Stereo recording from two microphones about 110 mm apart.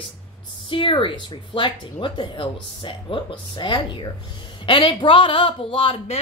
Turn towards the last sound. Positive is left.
turn(degrees=55)  # may be behind; listen again after turning